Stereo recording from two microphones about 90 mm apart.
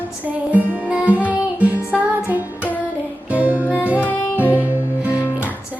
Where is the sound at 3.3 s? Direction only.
15° right (ahead or behind).